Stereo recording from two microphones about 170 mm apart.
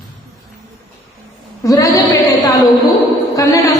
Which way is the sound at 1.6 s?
20° left (ahead or behind).